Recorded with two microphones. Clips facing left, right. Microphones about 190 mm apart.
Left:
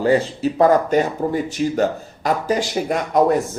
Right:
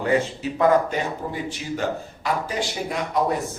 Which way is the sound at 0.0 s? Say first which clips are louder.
Left 5 dB; 35° left (ahead or behind).